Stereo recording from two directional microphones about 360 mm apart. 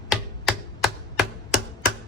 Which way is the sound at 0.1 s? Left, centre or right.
Centre.